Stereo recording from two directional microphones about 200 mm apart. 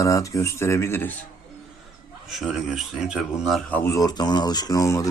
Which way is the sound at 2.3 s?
Centre (ahead or behind).